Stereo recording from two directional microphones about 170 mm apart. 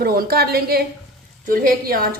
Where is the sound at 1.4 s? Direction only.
55° right (ahead or behind).